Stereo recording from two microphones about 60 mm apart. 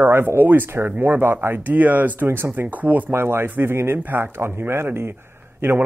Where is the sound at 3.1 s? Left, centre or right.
Right.